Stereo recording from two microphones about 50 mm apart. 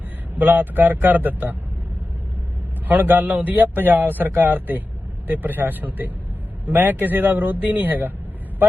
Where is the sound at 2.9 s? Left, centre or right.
Right.